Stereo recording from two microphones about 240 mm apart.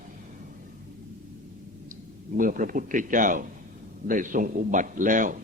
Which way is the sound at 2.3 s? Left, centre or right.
Right.